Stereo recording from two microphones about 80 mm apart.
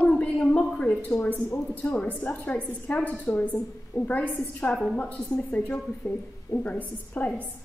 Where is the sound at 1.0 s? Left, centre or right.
Centre.